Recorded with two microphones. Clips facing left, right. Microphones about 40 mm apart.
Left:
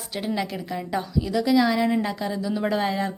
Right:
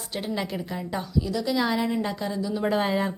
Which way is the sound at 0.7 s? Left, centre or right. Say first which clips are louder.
Left 3 dB; centre.